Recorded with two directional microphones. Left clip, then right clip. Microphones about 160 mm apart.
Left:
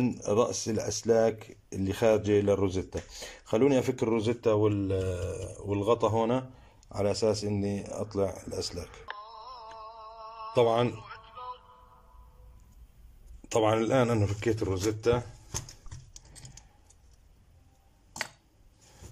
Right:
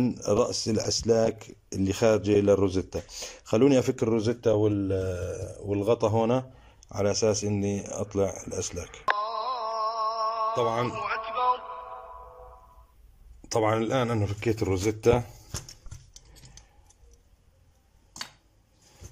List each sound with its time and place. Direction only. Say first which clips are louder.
0.0 s speech: right 2 dB; 5° right (ahead or behind)
7.4 s speech: right 3 dB; 5° left (ahead or behind)
9.0 s a sound: right 15 dB; 60° right (ahead or behind)
10.5 s speech: left 2 dB; 10° left (ahead or behind)
10.9 s music: right 12 dB; 55° right (ahead or behind)
13.5 s speech: even; 10° left (ahead or behind); by 15.2 s 15° right (ahead or behind)